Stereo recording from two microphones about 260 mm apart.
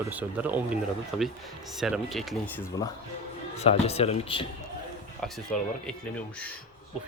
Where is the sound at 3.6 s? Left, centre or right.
Left.